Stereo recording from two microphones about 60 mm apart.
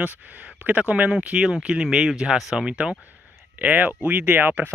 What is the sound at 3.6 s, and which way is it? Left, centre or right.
Speech, right.